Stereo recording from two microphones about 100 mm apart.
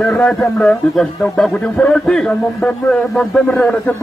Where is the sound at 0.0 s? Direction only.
10° left (ahead or behind).